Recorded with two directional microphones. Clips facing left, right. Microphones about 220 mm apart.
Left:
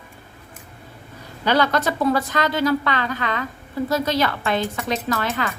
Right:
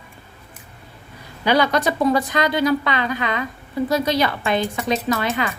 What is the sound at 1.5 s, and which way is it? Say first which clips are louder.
A woman's voice: right 1 dB; 15° right (ahead or behind).